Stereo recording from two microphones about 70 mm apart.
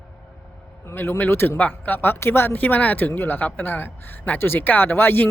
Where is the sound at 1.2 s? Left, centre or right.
Left.